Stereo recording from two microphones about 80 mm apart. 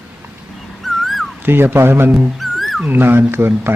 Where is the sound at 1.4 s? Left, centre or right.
Right.